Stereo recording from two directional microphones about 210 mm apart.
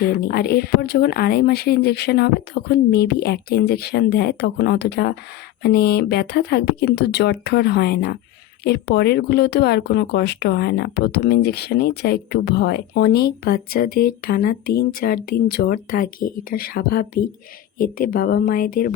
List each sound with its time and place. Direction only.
0.0 s speech: 45° left (ahead or behind)